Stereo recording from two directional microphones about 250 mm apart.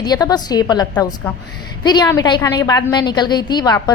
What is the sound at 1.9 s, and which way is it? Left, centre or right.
A woman's voice, centre.